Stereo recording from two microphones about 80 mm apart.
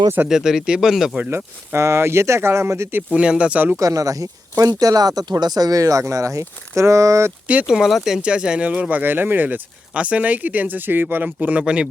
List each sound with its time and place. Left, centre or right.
0.3 s speech: centre
1.7 s speech: right
3.1 s speech: centre
3.8 s speech: right
7.4 s speech: centre
7.7 s speech: centre